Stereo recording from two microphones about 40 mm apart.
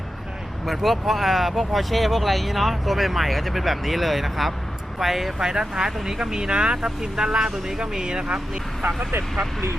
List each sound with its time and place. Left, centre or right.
0.6 s speech: centre
5.4 s speech: centre